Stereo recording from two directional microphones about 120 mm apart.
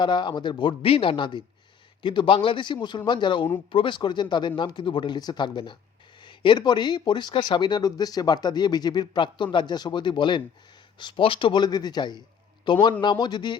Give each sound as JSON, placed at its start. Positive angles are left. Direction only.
{"t": 0.0, "sound": "a man's voice", "side_deg": 40}